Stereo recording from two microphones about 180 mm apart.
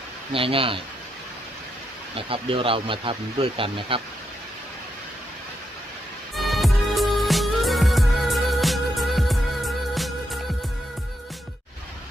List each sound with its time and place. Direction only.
0.3 s speech: 30° right (ahead or behind)
2.1 s speech: 30° right (ahead or behind)
6.3 s music: centre (ahead or behind)